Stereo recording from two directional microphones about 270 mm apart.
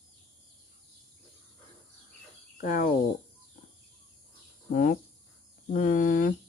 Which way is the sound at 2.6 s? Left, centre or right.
Left.